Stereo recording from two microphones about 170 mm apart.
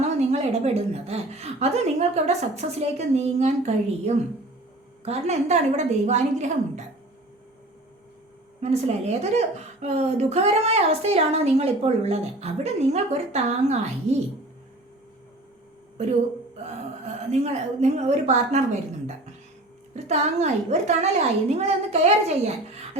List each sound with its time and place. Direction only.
0.0 s a woman's voice: 40° right (ahead or behind)
8.6 s a woman's voice: 40° right (ahead or behind)
17.4 s a woman's voice: 40° right (ahead or behind)